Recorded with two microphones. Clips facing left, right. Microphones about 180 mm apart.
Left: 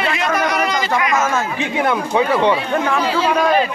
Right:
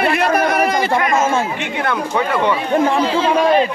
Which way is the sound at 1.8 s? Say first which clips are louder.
Left 2 dB; 15° left (ahead or behind).